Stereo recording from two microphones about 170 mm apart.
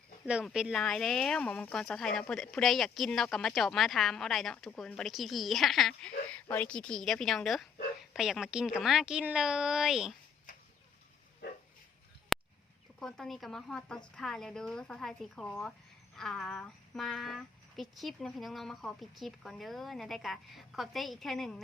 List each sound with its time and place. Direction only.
0.3 s speech: 5° right (ahead or behind)
11.4 s bow-wow: 70° left (ahead or behind)
12.3 s a sound: centre (ahead or behind)
13.0 s speech: centre (ahead or behind)